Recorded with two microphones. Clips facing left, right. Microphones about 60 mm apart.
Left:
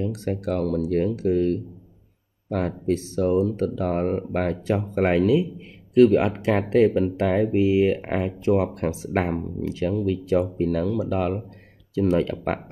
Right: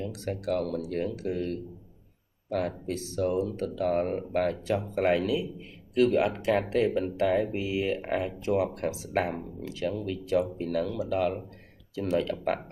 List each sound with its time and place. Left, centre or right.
0.1 s speech: left
2.5 s speech: left